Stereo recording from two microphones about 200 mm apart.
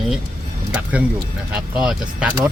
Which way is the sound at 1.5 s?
5° right (ahead or behind).